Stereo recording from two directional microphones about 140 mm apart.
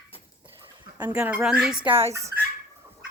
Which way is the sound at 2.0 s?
20° right (ahead or behind).